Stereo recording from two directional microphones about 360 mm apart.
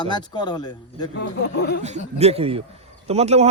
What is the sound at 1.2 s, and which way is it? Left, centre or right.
Speech, left.